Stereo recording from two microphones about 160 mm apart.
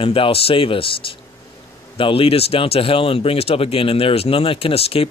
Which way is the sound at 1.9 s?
35° left (ahead or behind).